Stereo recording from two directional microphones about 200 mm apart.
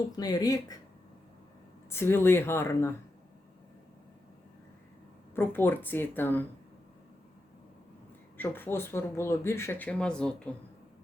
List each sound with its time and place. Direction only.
0.2 s speech: 20° left (ahead or behind)
1.9 s speech: 10° left (ahead or behind)
5.3 s speech: 10° left (ahead or behind)
8.4 s speech: 10° left (ahead or behind)